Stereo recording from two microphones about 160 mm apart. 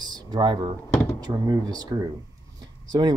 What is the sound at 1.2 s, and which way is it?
Speech, 25° right (ahead or behind).